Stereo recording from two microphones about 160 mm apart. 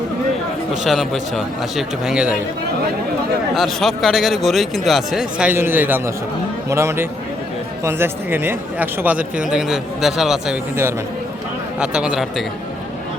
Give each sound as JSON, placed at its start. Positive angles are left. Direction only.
{"t": 0.7, "sound": "a man's voice", "side_deg": 0}
{"t": 3.5, "sound": "a man's voice", "side_deg": 0}
{"t": 11.8, "sound": "a man's voice", "side_deg": -5}